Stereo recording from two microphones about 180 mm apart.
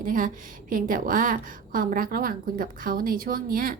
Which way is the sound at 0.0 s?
50° right (ahead or behind).